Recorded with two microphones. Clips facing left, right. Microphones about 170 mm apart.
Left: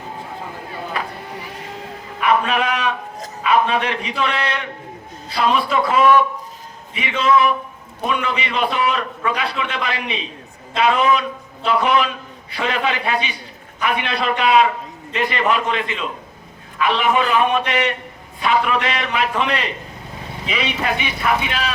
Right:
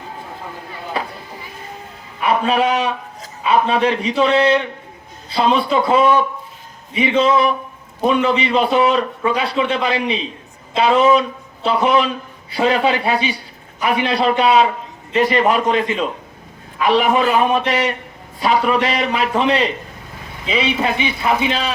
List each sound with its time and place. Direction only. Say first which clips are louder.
0.9 s a sound: right 3 dB; 30° right (ahead or behind)
2.2 s a man's voice: right 2 dB; 30° right (ahead or behind)
21.2 s a man's voice: right 2 dB; 25° right (ahead or behind)